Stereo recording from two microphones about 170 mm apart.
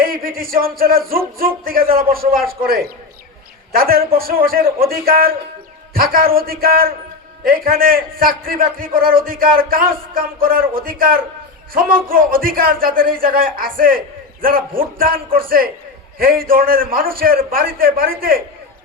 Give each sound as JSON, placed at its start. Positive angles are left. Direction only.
{"t": 0.0, "sound": "a man's voice", "side_deg": -55}
{"t": 3.8, "sound": "a man's voice", "side_deg": -60}